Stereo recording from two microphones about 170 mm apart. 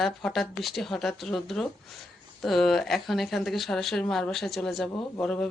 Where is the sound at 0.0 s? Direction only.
5° left (ahead or behind).